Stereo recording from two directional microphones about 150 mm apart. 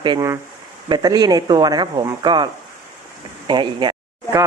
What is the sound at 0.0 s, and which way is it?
Speech, 30° right (ahead or behind).